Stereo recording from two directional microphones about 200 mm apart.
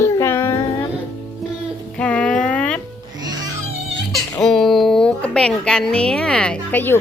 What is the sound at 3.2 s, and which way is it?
Music, 20° right (ahead or behind).